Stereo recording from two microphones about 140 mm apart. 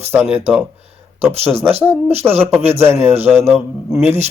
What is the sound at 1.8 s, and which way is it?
Speech, 15° right (ahead or behind).